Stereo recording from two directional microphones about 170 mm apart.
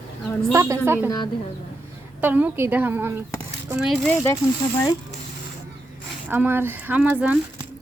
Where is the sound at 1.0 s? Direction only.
25° left (ahead or behind).